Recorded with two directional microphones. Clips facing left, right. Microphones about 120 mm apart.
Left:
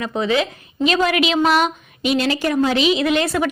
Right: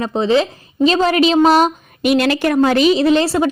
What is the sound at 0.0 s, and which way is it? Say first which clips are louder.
A woman's voice: right 4 dB; 30° right (ahead or behind).